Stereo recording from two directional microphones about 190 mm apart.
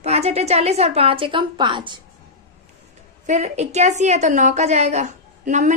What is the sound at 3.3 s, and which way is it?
A woman's voice, 35° right (ahead or behind).